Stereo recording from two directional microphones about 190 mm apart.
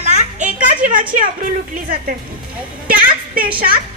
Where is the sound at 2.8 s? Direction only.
50° right (ahead or behind).